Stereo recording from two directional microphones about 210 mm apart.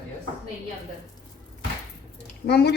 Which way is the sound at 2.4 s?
50° left (ahead or behind).